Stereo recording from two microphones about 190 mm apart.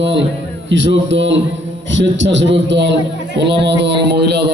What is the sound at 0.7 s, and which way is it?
A man's voice, 75° right (ahead or behind).